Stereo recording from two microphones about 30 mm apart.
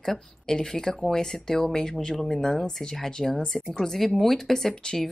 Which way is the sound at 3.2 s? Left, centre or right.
Centre.